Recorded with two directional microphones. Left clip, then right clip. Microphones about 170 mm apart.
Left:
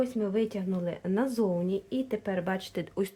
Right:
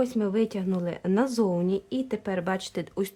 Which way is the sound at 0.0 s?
35° right (ahead or behind).